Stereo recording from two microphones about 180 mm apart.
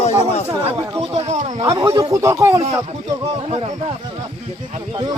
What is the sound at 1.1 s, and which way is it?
Speech, 40° right (ahead or behind).